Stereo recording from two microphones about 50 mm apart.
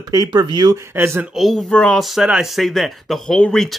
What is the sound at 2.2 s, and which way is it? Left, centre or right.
Speech, centre.